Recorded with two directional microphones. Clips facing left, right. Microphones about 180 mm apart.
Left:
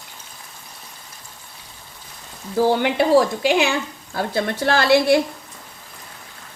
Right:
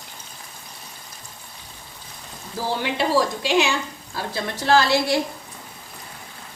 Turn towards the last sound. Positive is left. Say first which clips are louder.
# left 3 dB
turn(degrees=60)  # may be behind; listen again after turning